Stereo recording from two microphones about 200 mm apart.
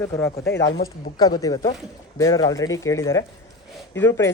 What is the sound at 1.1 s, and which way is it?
A woman's voice, 20° left (ahead or behind).